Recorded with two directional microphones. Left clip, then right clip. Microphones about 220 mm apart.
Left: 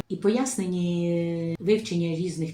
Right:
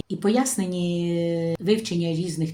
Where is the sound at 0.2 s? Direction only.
55° right (ahead or behind).